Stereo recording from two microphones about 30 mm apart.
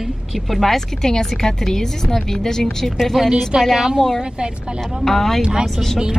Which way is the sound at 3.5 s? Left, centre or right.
Right.